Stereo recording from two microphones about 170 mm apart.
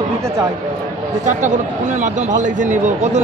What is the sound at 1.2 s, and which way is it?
A man's voice, 45° right (ahead or behind).